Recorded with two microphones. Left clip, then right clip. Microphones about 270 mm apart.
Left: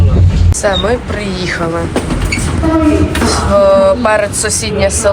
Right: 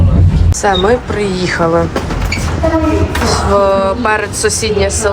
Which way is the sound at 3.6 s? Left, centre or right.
Centre.